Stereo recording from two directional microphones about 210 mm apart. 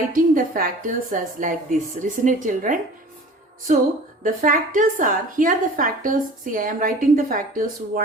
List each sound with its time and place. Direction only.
0.1 s a woman's voice: 40° right (ahead or behind)
4.2 s a woman's voice: 40° right (ahead or behind)